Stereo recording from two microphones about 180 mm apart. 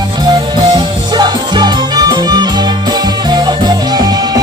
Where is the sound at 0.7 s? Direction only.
25° right (ahead or behind).